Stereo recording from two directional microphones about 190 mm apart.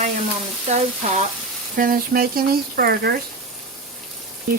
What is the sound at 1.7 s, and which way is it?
Speech, 50° right (ahead or behind).